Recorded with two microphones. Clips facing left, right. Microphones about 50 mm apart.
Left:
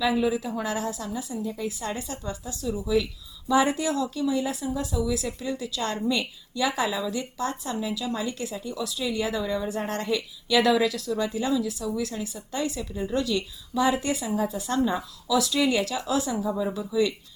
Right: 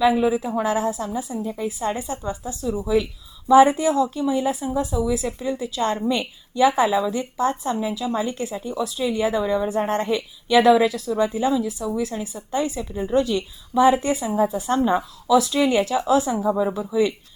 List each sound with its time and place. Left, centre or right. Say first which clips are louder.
0.0 s speech: right 6 dB; right